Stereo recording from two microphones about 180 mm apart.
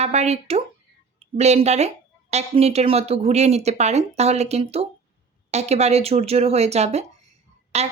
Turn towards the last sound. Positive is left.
turn(degrees=-35)  # may be behind; listen again after turning